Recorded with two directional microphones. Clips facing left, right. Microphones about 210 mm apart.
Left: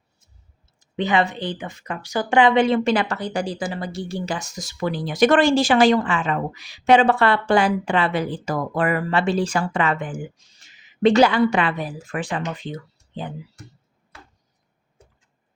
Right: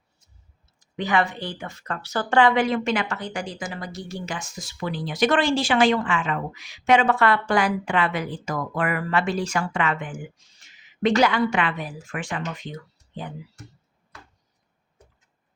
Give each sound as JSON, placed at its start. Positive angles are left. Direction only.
{"t": 0.8, "sound": "speech", "side_deg": 25}